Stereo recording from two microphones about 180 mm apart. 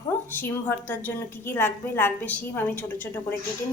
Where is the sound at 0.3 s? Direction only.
10° left (ahead or behind).